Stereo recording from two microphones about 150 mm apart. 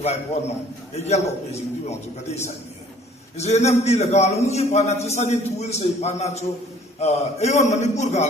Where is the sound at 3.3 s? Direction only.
45° left (ahead or behind).